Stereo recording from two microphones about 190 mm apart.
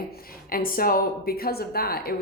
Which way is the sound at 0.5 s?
50° left (ahead or behind).